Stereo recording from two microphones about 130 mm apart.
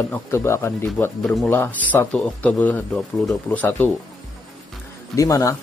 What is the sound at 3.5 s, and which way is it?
Speech, 15° left (ahead or behind).